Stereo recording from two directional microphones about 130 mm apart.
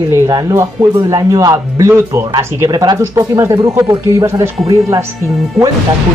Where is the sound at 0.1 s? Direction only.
30° right (ahead or behind).